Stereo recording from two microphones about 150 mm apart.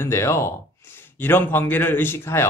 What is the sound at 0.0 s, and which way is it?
Speech, 15° left (ahead or behind).